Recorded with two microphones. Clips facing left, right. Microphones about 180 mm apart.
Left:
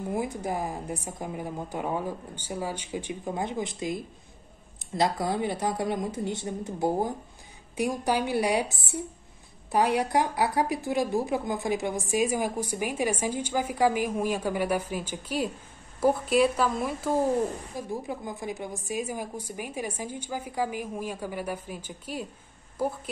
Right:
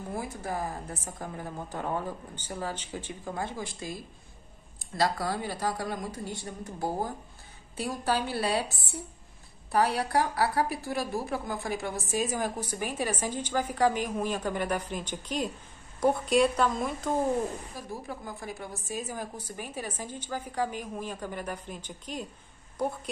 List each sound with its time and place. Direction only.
0.1 s a woman's voice: 20° left (ahead or behind)
9.7 s a woman's voice: 20° left (ahead or behind)
17.7 s a woman's voice: 20° left (ahead or behind)